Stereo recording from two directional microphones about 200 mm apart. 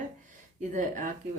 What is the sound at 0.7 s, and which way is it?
Speech, 40° right (ahead or behind).